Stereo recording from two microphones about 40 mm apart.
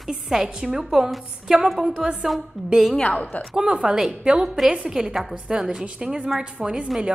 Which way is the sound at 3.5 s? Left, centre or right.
Centre.